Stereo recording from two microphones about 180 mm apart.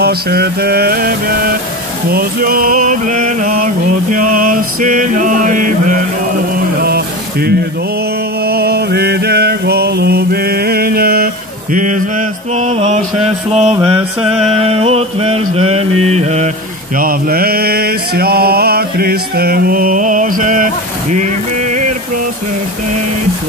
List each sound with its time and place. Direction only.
0.0 s mantra: 60° right (ahead or behind)
2.0 s a sound: 55° right (ahead or behind)
6.8 s a sound: 60° right (ahead or behind)
8.5 s mantra: 60° right (ahead or behind)
11.7 s mantra: 45° right (ahead or behind)
16.9 s mantra: 50° right (ahead or behind)